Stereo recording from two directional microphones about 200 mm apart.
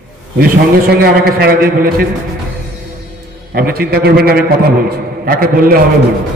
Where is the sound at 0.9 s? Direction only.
50° right (ahead or behind).